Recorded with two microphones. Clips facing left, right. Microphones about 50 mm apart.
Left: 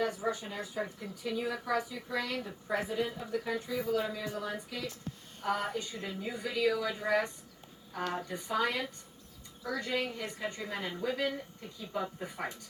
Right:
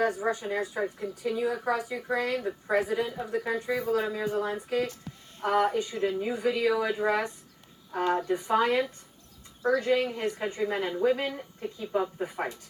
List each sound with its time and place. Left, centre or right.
0.2 s speech: right